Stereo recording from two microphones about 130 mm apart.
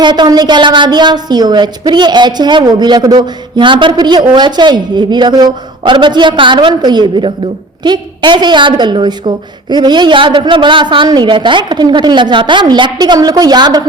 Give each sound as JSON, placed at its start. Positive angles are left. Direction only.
{"t": 0.0, "sound": "a woman's voice", "side_deg": -35}